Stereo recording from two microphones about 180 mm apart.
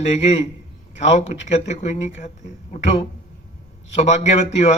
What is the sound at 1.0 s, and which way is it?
Speech, 40° left (ahead or behind).